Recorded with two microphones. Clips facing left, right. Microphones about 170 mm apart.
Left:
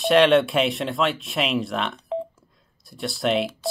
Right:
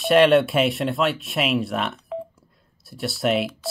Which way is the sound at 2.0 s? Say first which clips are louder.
Left 3 dB; 20° left (ahead or behind).